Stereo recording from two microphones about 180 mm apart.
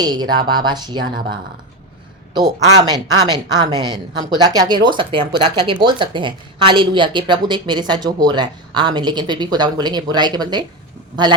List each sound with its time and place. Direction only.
0.0 s speech: 25° right (ahead or behind)
2.7 s speech: 20° right (ahead or behind)